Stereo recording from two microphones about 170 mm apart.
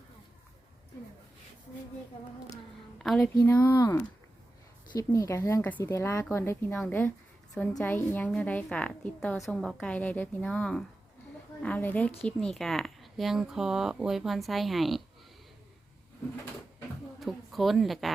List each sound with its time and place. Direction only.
3.0 s a woman's voice: centre (ahead or behind)
3.3 s a woman's voice: 15° left (ahead or behind)
4.9 s a woman's voice: 20° left (ahead or behind); by 15.0 s centre (ahead or behind)
17.2 s a woman's voice: centre (ahead or behind)